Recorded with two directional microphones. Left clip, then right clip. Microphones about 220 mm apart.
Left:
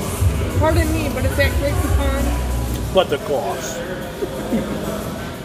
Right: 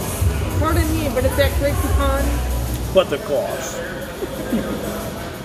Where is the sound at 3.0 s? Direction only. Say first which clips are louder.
Right 1 dB; 5° left (ahead or behind).